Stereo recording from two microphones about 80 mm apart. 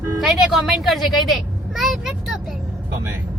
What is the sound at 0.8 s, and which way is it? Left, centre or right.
A woman's voice, centre.